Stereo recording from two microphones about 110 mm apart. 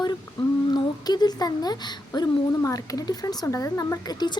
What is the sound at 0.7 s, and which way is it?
A child's voice, 40° left (ahead or behind).